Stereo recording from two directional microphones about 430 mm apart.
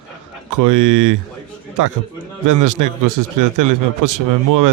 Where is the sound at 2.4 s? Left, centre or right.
Right.